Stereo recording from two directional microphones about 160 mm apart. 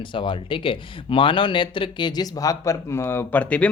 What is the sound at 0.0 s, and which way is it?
Speech, 30° left (ahead or behind).